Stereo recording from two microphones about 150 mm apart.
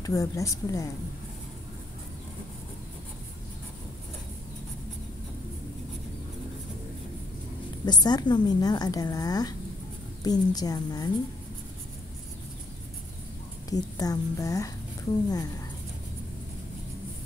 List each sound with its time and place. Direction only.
0.0 s a woman's voice: 20° left (ahead or behind)
7.8 s a woman's voice: 30° left (ahead or behind)
13.7 s a woman's voice: 25° left (ahead or behind)